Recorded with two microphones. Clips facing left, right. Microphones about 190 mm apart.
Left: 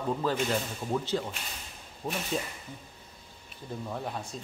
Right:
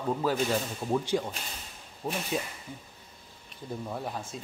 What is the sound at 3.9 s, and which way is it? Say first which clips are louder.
Speech: left 1 dB; 5° right (ahead or behind).